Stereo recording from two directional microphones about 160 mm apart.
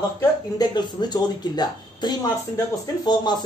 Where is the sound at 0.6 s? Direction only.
25° left (ahead or behind).